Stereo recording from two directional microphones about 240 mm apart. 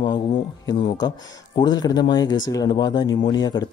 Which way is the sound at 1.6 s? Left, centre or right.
Centre.